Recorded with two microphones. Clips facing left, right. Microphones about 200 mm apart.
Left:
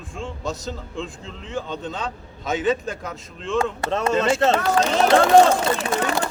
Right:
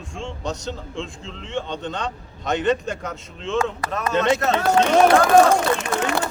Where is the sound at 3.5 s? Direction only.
30° left (ahead or behind).